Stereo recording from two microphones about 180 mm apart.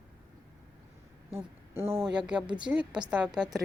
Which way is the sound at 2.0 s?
5° right (ahead or behind).